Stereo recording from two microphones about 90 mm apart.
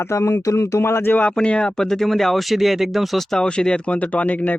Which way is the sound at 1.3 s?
10° left (ahead or behind).